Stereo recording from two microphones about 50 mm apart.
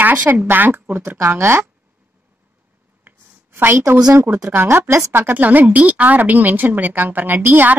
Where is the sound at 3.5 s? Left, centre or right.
Right.